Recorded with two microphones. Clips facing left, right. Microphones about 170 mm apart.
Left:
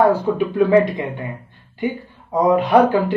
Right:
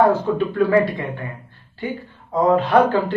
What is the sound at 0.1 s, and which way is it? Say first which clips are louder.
Speech: left 1 dB; 15° left (ahead or behind).